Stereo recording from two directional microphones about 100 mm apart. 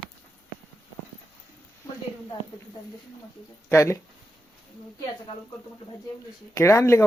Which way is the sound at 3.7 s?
30° left (ahead or behind).